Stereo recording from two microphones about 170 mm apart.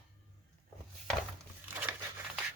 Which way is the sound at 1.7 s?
10° right (ahead or behind).